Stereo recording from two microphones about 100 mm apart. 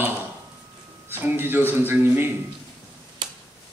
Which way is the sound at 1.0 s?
20° right (ahead or behind).